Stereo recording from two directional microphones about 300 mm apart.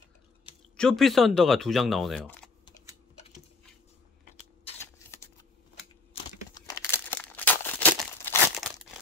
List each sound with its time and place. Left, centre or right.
0.7 s speech: centre
4.7 s shuffling cards: centre
6.1 s crumpling: centre